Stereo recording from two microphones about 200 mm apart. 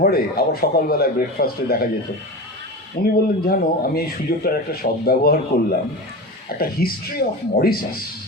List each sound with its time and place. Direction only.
0.0 s a man's voice: 50° left (ahead or behind)
3.0 s a man's voice: 50° left (ahead or behind)